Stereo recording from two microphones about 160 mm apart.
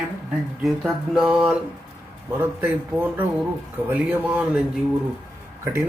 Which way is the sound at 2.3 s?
10° right (ahead or behind).